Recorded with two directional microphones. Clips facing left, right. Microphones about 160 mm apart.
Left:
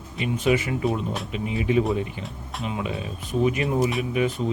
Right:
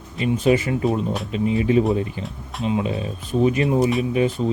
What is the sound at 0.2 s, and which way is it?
Speech, 35° right (ahead or behind).